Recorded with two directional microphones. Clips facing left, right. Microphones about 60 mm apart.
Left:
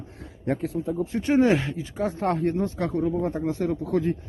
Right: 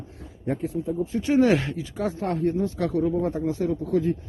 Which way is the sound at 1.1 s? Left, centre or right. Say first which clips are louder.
Even; left.